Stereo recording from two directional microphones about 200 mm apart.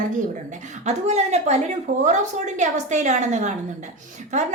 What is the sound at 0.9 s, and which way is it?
A woman's voice, 35° right (ahead or behind).